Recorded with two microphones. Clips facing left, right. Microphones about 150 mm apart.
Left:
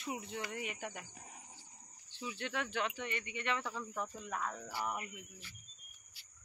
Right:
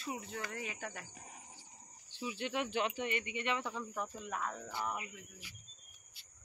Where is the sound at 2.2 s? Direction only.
15° right (ahead or behind).